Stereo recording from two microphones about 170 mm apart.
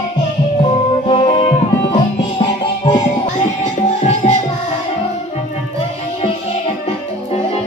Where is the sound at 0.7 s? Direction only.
30° left (ahead or behind).